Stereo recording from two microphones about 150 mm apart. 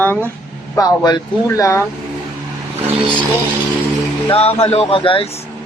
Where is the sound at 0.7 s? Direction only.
25° left (ahead or behind).